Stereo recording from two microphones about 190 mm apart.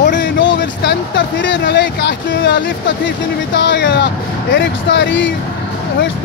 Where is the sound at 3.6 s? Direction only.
70° left (ahead or behind).